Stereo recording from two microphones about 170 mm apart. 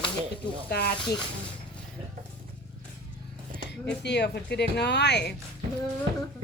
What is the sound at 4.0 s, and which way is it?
Speech, 80° left.